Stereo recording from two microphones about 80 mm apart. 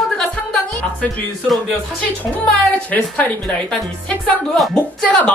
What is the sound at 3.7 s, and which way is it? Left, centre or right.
Speech, centre.